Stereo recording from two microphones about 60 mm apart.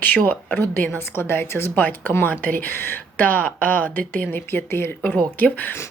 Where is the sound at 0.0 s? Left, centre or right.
Left.